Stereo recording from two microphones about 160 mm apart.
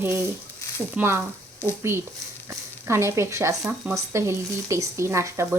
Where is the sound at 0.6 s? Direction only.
20° left (ahead or behind).